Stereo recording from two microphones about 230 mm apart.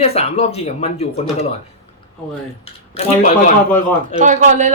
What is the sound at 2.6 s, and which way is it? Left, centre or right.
Speech, left.